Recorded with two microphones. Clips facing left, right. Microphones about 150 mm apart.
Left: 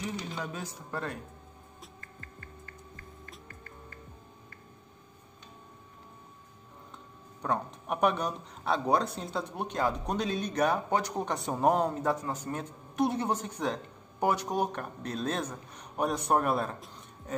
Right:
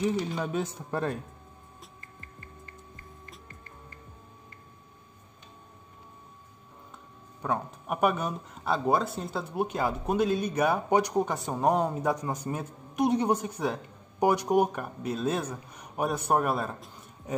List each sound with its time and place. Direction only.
0.4 s speech: 25° right (ahead or behind)
7.4 s speech: 5° right (ahead or behind)
11.3 s speech: centre (ahead or behind)
12.0 s speech: 10° right (ahead or behind)